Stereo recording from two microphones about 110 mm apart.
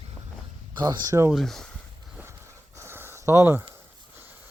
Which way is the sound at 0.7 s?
35° right (ahead or behind).